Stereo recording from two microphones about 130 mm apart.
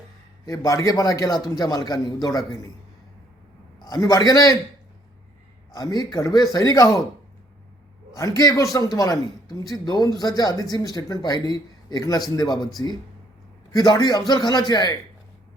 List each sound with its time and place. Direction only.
0.4 s speech: 25° left (ahead or behind)
3.8 s speech: 30° left (ahead or behind)
5.7 s speech: 30° left (ahead or behind)
8.1 s a man's voice: 30° left (ahead or behind)
13.7 s a man's voice: 30° left (ahead or behind)